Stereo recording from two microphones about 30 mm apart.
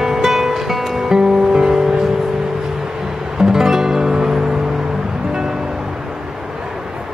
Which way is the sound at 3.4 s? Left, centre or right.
Centre.